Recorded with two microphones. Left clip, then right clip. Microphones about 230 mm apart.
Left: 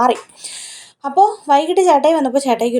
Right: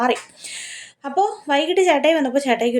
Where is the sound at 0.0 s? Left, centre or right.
Centre.